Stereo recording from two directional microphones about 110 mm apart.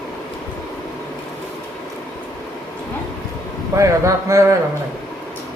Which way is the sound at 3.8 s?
30° right (ahead or behind).